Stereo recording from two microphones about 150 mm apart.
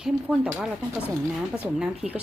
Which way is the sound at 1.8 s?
5° right (ahead or behind).